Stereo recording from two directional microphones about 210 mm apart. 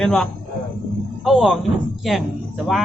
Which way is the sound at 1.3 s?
Centre (ahead or behind).